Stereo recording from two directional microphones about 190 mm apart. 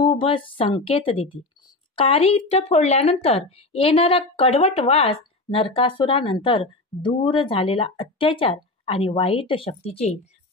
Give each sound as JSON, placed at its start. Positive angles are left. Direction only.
{"t": 0.0, "sound": "speech", "side_deg": 25}